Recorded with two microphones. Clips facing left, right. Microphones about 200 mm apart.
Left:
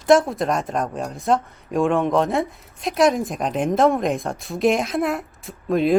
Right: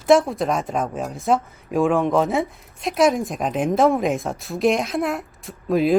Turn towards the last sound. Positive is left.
turn(degrees=0)  # may be behind; listen again after turning